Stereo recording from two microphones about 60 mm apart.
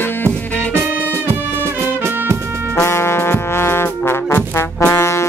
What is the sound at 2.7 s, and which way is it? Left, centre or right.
Trombone, left.